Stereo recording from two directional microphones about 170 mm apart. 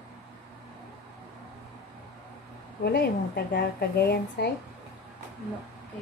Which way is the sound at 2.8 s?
70° left (ahead or behind).